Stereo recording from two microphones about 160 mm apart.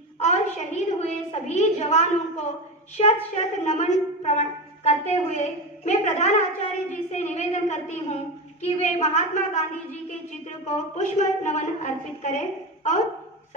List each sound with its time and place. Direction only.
0.2 s a woman's voice: 50° left (ahead or behind)
3.6 s a woman's voice: 50° left (ahead or behind)
10.7 s a woman's voice: 50° left (ahead or behind)